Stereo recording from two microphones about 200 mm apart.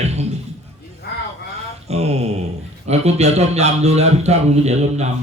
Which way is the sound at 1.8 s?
30° right (ahead or behind).